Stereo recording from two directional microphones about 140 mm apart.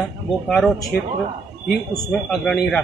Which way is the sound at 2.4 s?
5° left (ahead or behind).